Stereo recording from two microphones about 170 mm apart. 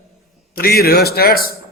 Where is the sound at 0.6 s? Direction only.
65° left (ahead or behind).